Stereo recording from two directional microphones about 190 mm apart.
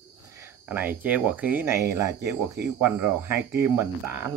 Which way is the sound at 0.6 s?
10° right (ahead or behind).